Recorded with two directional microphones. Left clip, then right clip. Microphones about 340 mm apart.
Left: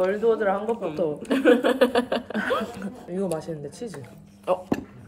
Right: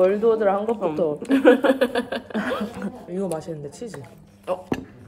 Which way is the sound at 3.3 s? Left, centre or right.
Centre.